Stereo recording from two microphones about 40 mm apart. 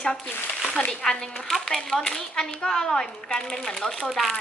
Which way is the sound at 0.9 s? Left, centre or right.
Centre.